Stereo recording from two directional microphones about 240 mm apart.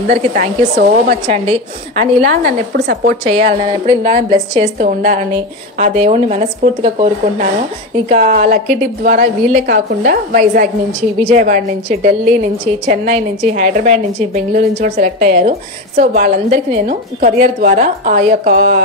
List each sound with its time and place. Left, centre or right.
0.1 s speech: right
2.2 s a woman's voice: right
3.3 s speech: right
4.1 s a woman's voice: right